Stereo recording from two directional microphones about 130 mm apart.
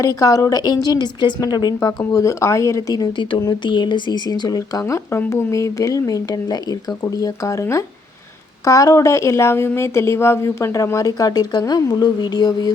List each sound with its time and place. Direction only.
0.0 s a woman's voice: 25° left (ahead or behind)